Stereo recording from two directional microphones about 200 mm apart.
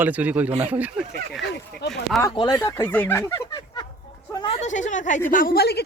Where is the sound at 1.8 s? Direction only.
55° left (ahead or behind).